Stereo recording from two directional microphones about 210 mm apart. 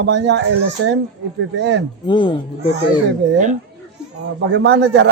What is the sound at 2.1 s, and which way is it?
Speech, 20° left (ahead or behind).